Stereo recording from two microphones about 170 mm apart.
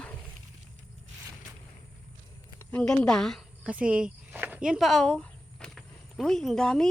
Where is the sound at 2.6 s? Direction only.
5° left (ahead or behind).